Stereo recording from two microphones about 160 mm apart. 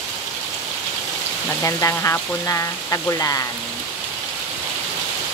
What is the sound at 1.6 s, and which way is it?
Speech, 20° left (ahead or behind).